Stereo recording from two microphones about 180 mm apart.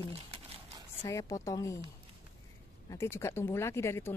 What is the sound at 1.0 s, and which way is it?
Speech, 15° left (ahead or behind).